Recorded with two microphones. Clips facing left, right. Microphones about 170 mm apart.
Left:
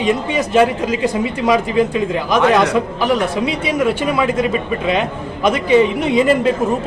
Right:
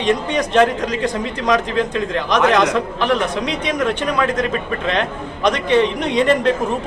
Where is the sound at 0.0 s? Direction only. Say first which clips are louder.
Left 1 dB; 5° left (ahead or behind).